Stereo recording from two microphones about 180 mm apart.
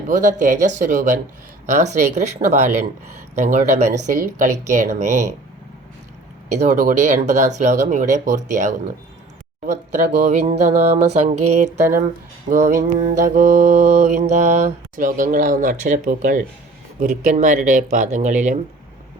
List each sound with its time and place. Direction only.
0.1 s mantra: 45° right (ahead or behind)
1.7 s speech: 40° right (ahead or behind)
4.4 s mantra: 45° right (ahead or behind)
6.6 s speech: 40° right (ahead or behind)
9.6 s mantra: 40° right (ahead or behind)
10.6 s speech: 40° right (ahead or behind)
13.0 s mantra: 45° right (ahead or behind)